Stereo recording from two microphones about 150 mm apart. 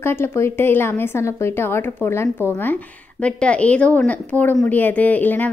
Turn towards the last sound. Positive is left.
turn(degrees=10)  # may be behind; listen again after turning